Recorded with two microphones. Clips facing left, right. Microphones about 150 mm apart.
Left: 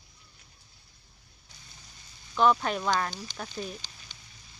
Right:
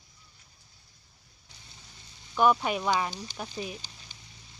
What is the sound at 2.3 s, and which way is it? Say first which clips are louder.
Speech: even; 10° right (ahead or behind).